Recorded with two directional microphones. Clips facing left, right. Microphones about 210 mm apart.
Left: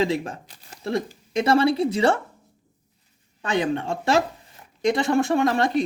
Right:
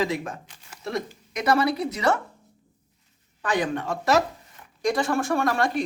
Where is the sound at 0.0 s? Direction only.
30° left (ahead or behind).